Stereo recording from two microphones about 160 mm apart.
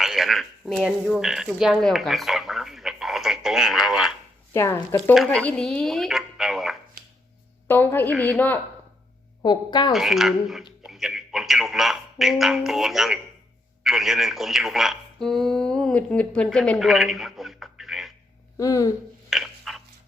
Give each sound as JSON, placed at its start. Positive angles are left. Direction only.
{"t": 0.0, "sound": "speech", "side_deg": 0}
{"t": 4.5, "sound": "speech", "side_deg": 15}
{"t": 5.1, "sound": "speech", "side_deg": 0}
{"t": 7.0, "sound": "chopping", "side_deg": -75}
{"t": 7.7, "sound": "speech", "side_deg": 15}
{"t": 9.4, "sound": "speech", "side_deg": 25}
{"t": 9.9, "sound": "speech", "side_deg": 0}
{"t": 18.5, "sound": "speech", "side_deg": 20}
{"t": 19.3, "sound": "a sound", "side_deg": 0}